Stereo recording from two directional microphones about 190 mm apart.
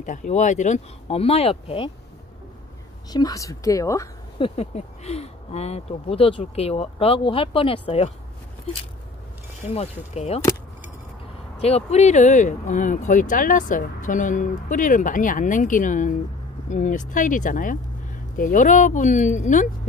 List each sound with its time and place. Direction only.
0.0 s speech: 40° left (ahead or behind)
3.1 s speech: 20° left (ahead or behind)
4.4 s speech: 35° left (ahead or behind)
9.6 s speech: 35° left (ahead or behind)
11.5 s speech: 35° left (ahead or behind)